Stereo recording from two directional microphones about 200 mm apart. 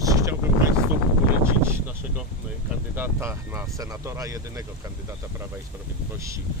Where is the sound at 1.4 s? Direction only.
10° right (ahead or behind).